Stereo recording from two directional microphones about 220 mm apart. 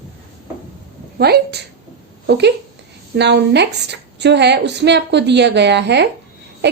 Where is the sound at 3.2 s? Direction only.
50° right (ahead or behind).